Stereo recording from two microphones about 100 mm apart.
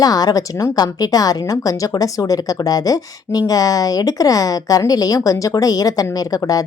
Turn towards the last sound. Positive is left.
turn(degrees=35)  # may be behind; listen again after turning